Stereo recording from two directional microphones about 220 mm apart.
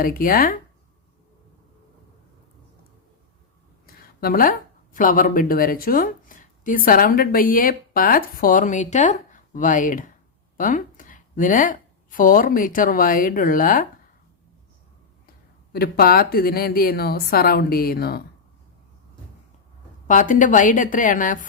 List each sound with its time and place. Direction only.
0.0 s speech: 40° left (ahead or behind)
3.8 s a sound: 40° left (ahead or behind)
4.9 s a woman's voice: 35° left (ahead or behind)
15.7 s a woman's voice: 45° left (ahead or behind)
20.1 s speech: 35° left (ahead or behind)